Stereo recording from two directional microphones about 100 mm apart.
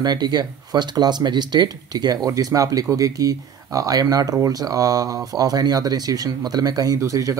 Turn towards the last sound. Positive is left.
turn(degrees=-35)  # may be behind; listen again after turning